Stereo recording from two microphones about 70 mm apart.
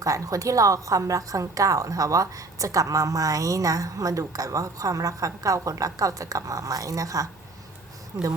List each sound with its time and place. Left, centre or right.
0.0 s a woman's voice: right